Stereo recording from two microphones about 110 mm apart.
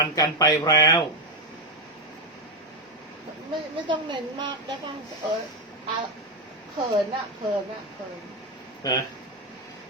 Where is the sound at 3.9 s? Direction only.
45° right (ahead or behind).